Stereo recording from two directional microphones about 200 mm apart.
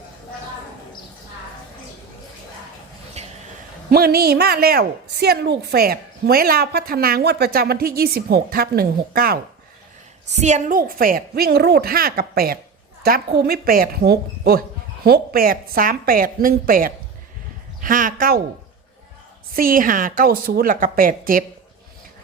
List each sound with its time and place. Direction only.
3.2 s a sound: 35° right (ahead or behind)
3.8 s a woman's voice: 50° right (ahead or behind)
10.3 s a woman's voice: 35° right (ahead or behind)
19.5 s a woman's voice: 45° right (ahead or behind)